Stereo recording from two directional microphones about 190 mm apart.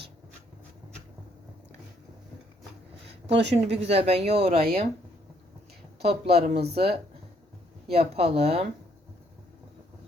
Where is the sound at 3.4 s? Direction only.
65° right (ahead or behind).